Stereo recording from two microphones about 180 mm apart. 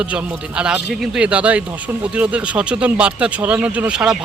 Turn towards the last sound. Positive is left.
turn(degrees=-5)  # may be behind; listen again after turning